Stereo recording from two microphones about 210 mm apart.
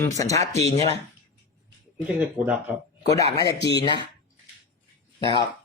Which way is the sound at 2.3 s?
5° right (ahead or behind).